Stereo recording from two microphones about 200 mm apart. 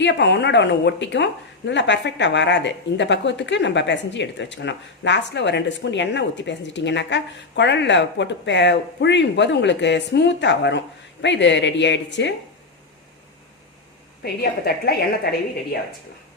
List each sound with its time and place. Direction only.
0.0 s a woman's voice: 60° left (ahead or behind)
14.2 s a woman's voice: 50° left (ahead or behind)